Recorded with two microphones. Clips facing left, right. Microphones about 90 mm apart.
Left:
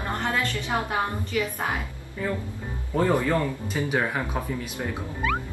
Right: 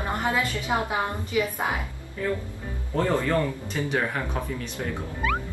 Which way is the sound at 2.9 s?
10° left (ahead or behind).